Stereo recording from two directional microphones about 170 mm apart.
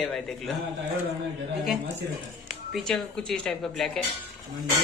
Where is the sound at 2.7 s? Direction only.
Centre (ahead or behind).